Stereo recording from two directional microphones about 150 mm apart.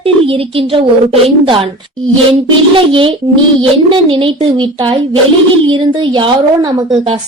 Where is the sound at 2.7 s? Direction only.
35° right (ahead or behind).